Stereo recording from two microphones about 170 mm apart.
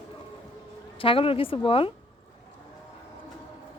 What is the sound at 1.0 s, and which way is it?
Speech, 30° left (ahead or behind).